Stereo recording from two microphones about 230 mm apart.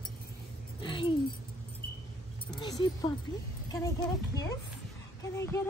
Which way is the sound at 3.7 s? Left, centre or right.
Centre.